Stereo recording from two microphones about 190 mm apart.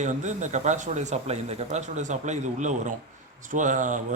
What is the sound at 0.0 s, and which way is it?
A man's voice, 40° right (ahead or behind).